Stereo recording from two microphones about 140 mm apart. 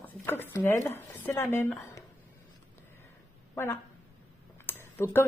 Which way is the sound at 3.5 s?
15° left (ahead or behind).